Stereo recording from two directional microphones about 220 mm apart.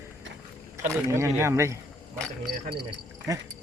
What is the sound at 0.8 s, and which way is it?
Speech, 10° right (ahead or behind).